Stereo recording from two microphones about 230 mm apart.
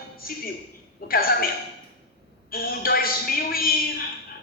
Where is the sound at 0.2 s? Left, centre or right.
Left.